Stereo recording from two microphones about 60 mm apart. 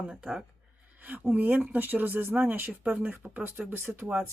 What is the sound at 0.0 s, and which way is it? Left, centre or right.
Speech, centre.